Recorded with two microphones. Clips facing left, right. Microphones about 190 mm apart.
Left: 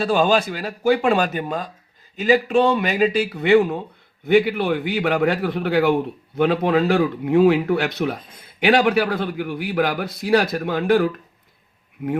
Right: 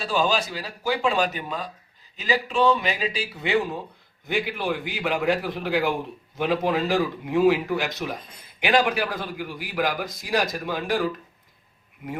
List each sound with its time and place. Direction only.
0.0 s a man's voice: 55° left (ahead or behind)